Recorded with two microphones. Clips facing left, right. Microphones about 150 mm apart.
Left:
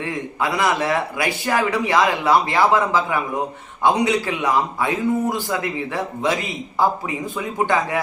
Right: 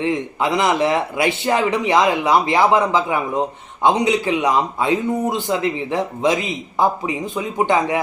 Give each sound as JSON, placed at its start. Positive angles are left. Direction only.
{"t": 0.0, "sound": "a man's voice", "side_deg": -20}